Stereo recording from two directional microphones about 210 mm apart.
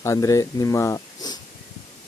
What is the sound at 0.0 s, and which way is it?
Speech, 15° left (ahead or behind).